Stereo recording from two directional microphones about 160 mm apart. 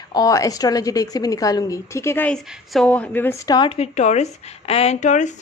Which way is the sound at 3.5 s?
35° left (ahead or behind).